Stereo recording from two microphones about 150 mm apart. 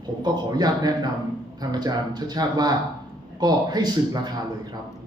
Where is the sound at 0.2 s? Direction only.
25° right (ahead or behind).